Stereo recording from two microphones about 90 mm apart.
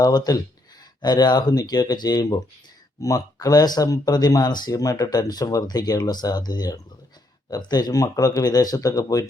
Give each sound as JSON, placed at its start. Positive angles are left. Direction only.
{"t": 0.0, "sound": "speech", "side_deg": 45}